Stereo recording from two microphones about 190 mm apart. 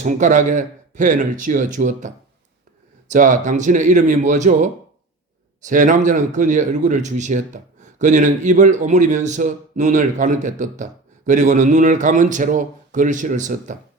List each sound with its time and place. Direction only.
0.0 s a man's voice: 40° right (ahead or behind)